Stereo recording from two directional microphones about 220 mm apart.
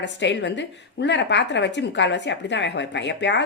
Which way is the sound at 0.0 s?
55° left (ahead or behind).